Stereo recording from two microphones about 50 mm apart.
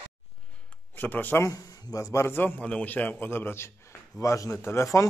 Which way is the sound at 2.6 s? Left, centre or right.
Left.